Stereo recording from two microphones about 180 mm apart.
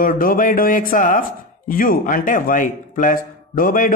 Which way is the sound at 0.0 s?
50° left (ahead or behind).